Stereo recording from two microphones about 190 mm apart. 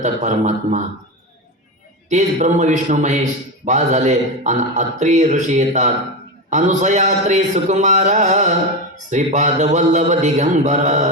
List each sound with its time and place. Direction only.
0.0 s a man's voice: 40° right (ahead or behind)
2.0 s a man's voice: 40° right (ahead or behind)